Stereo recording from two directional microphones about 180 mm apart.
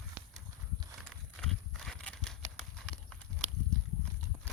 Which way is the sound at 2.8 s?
5° left (ahead or behind).